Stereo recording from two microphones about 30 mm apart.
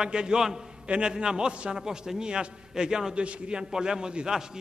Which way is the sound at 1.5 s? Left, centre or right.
Right.